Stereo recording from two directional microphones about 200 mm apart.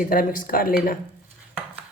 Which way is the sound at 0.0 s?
45° left (ahead or behind).